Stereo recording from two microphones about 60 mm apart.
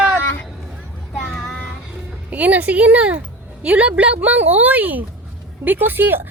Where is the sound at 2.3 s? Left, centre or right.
Right.